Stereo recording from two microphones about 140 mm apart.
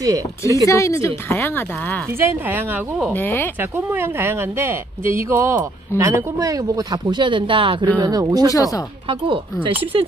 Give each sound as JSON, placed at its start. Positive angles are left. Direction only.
{"t": 0.7, "sound": "speech", "side_deg": 20}
{"t": 2.1, "sound": "speech", "side_deg": -15}
{"t": 3.1, "sound": "speech", "side_deg": 15}
{"t": 3.7, "sound": "a woman's voice", "side_deg": -15}
{"t": 8.5, "sound": "speech", "side_deg": 25}
{"t": 9.3, "sound": "speech", "side_deg": -40}